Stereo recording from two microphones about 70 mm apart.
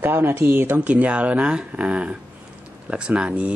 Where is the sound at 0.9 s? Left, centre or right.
Centre.